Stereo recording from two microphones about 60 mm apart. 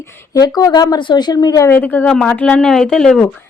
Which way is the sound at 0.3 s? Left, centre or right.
Left.